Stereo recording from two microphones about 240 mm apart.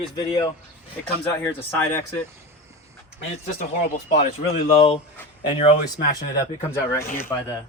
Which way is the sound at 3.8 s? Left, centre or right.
Left.